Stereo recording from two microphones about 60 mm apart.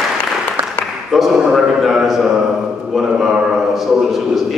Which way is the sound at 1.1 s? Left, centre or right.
Centre.